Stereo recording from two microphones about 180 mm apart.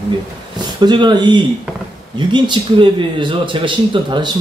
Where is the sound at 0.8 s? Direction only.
25° right (ahead or behind).